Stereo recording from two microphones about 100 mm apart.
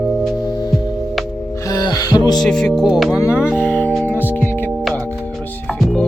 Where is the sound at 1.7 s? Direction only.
40° left (ahead or behind).